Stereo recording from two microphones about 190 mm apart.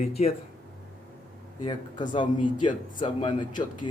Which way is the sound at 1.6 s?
25° left (ahead or behind).